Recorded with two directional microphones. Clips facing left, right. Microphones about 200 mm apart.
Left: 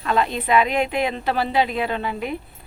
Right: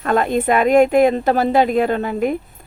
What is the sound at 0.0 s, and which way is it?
A woman's voice, 50° right (ahead or behind).